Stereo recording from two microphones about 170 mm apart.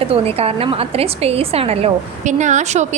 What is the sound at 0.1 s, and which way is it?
A woman's voice, 35° right (ahead or behind).